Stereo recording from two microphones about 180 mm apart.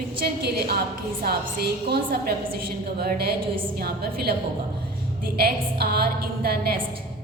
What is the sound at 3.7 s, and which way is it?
Speech, 60° right (ahead or behind).